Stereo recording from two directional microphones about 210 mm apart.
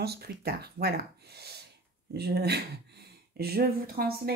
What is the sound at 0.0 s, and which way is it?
Speech, 50° right (ahead or behind).